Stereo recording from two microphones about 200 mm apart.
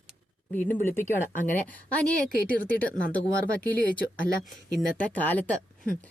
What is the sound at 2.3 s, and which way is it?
Speech, 45° left (ahead or behind).